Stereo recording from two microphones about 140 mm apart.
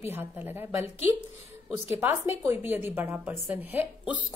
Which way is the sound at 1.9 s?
15° right (ahead or behind).